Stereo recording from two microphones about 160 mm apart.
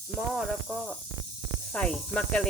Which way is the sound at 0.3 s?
Centre (ahead or behind).